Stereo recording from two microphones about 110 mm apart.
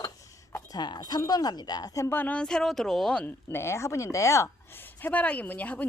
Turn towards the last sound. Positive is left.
turn(degrees=15)  # may be behind; listen again after turning